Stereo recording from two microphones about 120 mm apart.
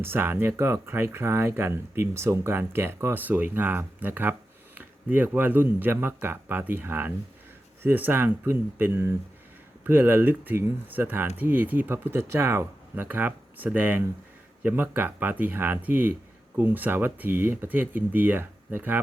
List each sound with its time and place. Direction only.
0.0 s speech: 20° right (ahead or behind)